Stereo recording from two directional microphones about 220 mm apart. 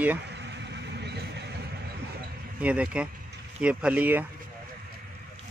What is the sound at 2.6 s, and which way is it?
Speech, 5° right (ahead or behind).